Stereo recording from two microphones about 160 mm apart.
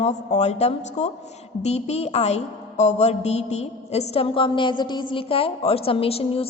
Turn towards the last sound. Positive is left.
turn(degrees=35)  # may be behind; listen again after turning